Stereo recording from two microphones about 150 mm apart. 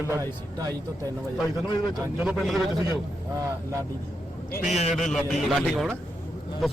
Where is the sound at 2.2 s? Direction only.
Centre (ahead or behind).